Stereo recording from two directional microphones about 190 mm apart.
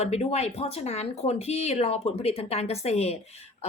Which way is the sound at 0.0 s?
35° left (ahead or behind).